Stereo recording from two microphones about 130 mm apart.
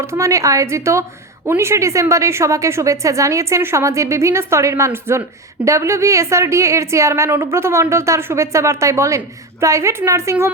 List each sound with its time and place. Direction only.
0.0 s a woman's voice: 20° right (ahead or behind)